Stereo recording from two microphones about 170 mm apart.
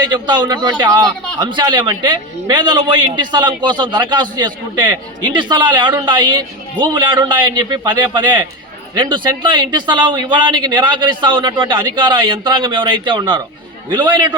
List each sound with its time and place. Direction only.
0.0 s a man's voice: 25° right (ahead or behind)